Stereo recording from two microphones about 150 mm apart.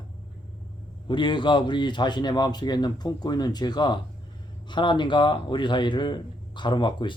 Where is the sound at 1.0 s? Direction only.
35° left (ahead or behind).